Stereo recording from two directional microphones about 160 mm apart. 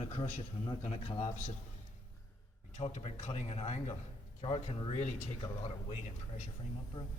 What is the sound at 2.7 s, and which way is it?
A man's voice, 40° left (ahead or behind).